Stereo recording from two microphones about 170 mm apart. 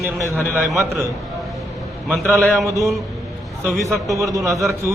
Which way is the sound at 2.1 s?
Centre (ahead or behind).